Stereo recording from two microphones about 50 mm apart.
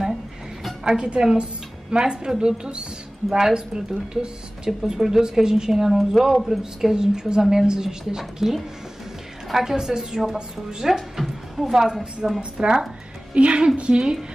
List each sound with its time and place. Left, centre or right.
0.8 s a woman's voice: centre